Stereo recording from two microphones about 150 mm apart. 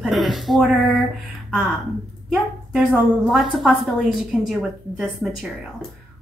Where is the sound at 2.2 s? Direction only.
5° right (ahead or behind).